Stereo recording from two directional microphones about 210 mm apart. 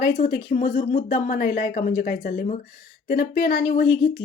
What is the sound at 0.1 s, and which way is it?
A woman's voice, 50° left (ahead or behind).